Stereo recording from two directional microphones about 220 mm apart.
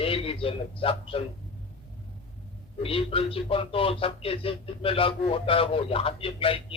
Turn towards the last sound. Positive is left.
turn(degrees=25)  # may be behind; listen again after turning